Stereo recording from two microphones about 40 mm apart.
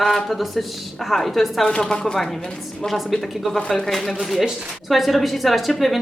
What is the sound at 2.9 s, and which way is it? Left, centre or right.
A woman's voice, centre.